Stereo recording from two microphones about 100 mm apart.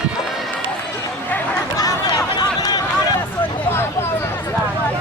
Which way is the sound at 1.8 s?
40° left (ahead or behind).